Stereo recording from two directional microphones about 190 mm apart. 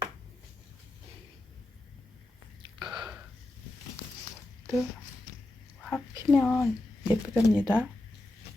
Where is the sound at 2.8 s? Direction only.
25° right (ahead or behind).